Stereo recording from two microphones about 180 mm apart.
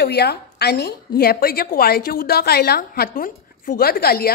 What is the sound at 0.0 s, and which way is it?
A woman's voice, 65° left (ahead or behind).